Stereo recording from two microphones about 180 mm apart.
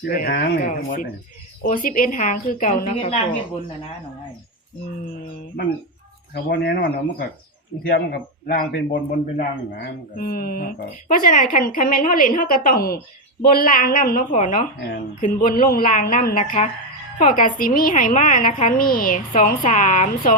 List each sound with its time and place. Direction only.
0.0 s speech: 55° left (ahead or behind)
0.6 s a woman's voice: 50° left (ahead or behind)
5.6 s a woman's voice: 60° left (ahead or behind); by 14.7 s 45° left (ahead or behind)
14.8 s speech: 60° left (ahead or behind)
15.2 s a woman's voice: 50° left (ahead or behind)